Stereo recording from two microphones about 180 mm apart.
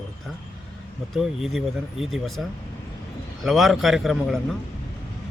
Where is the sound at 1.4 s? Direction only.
Centre (ahead or behind).